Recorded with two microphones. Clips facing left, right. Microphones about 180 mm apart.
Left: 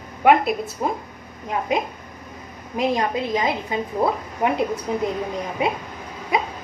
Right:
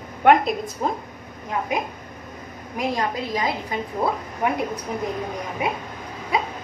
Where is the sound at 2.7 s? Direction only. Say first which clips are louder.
Left 3 dB; 20° left (ahead or behind).